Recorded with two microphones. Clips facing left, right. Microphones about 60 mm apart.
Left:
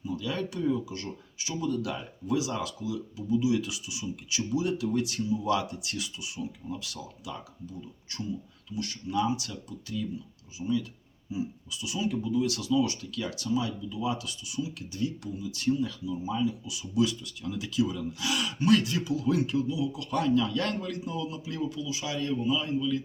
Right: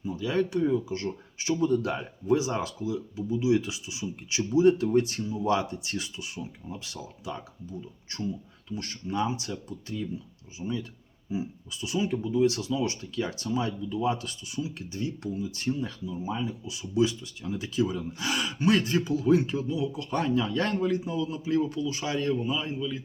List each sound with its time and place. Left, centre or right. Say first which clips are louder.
0.0 s speech: right 5 dB; right
11.3 s speech: right 1 dB; right
21.7 s speech: right 4 dB; right